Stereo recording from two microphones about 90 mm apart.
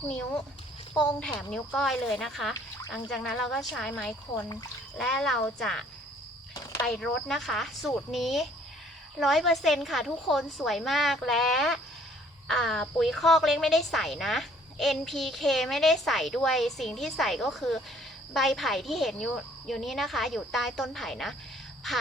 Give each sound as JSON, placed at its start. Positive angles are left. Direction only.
{"t": 1.2, "sound": "speech", "side_deg": 10}
{"t": 4.3, "sound": "speech", "side_deg": 75}
{"t": 4.9, "sound": "speech", "side_deg": 5}
{"t": 6.5, "sound": "cricket", "side_deg": 45}
{"t": 6.8, "sound": "speech", "side_deg": 5}